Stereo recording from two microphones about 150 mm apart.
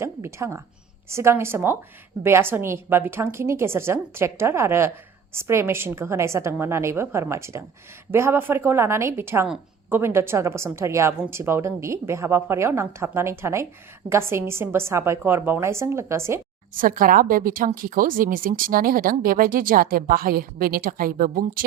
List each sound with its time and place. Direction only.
0.0 s a woman's voice: 20° right (ahead or behind)
16.7 s speech: 65° right (ahead or behind)